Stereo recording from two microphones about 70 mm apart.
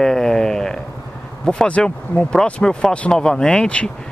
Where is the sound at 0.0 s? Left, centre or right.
Centre.